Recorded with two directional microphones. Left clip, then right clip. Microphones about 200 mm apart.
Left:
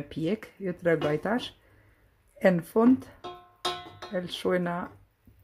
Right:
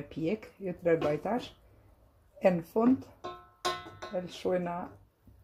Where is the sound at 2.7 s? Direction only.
35° left (ahead or behind).